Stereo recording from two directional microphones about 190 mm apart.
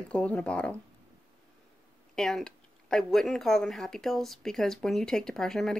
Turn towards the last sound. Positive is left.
turn(degrees=0)  # may be behind; listen again after turning